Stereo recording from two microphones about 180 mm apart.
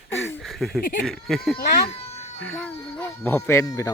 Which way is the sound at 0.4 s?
Centre (ahead or behind).